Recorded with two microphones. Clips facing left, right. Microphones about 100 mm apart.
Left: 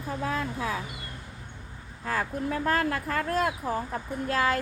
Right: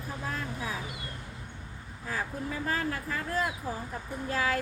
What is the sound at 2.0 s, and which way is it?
Speech, 65° left (ahead or behind).